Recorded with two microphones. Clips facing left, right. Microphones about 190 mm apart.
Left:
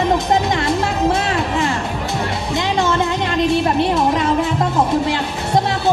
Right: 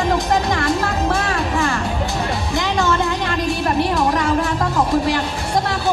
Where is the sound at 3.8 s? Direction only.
20° left (ahead or behind).